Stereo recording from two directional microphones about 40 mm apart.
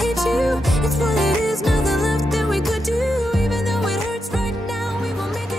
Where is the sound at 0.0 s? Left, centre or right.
Centre.